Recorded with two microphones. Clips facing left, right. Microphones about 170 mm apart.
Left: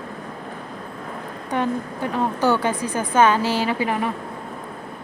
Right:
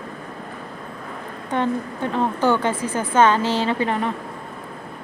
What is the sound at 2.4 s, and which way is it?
Speech, 10° left (ahead or behind).